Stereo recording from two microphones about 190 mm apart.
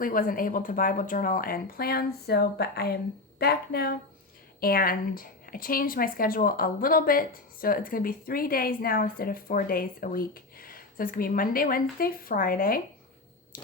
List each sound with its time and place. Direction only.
0.0 s speech: 45° left (ahead or behind)